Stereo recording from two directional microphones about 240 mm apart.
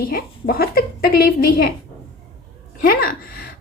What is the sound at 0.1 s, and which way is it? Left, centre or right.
A woman's voice, left.